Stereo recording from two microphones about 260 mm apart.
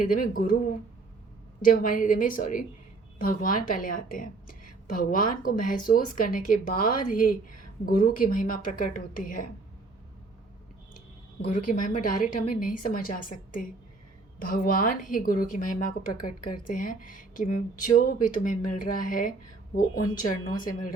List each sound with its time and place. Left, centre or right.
0.0 s a woman's voice: left
11.5 s a woman's voice: left